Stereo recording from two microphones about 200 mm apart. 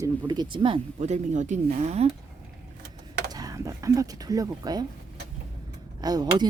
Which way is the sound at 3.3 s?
15° right (ahead or behind).